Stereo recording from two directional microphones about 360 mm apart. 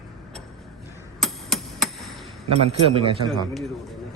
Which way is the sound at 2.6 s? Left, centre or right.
Centre.